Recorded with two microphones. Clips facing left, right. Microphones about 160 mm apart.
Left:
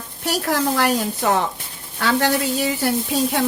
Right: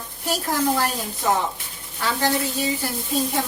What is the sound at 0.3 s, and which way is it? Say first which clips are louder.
Speech: left 2 dB; 85° left.